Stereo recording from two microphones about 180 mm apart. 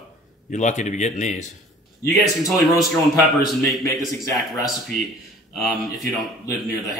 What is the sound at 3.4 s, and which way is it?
A man's voice, centre (ahead or behind).